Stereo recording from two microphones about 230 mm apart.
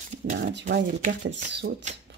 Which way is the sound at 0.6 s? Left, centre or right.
Right.